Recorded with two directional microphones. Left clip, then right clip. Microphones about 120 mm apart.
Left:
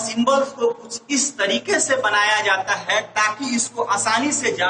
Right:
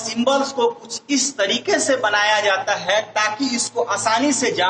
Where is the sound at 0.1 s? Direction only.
25° right (ahead or behind).